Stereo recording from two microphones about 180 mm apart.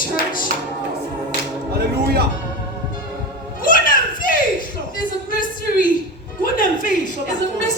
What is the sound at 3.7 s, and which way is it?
Children playing, 50° left (ahead or behind).